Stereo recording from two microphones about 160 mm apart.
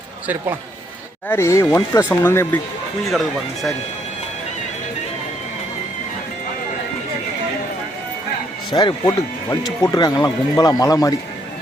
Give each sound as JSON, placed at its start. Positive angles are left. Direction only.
{"t": 1.3, "sound": "speech", "side_deg": 15}
{"t": 3.1, "sound": "speech", "side_deg": 0}
{"t": 8.7, "sound": "speech", "side_deg": 25}